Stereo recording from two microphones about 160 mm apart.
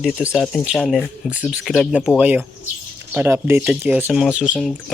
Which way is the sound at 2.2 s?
10° right (ahead or behind).